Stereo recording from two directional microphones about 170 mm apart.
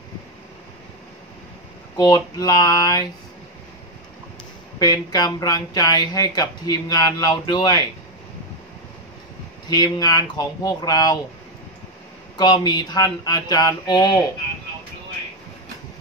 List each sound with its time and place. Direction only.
2.0 s speech: 25° left (ahead or behind)
4.7 s speech: 25° left (ahead or behind)
9.7 s speech: 25° left (ahead or behind)
12.4 s speech: 25° left (ahead or behind)